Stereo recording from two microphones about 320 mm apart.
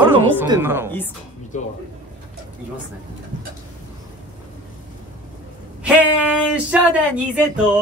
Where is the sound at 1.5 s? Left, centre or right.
Left.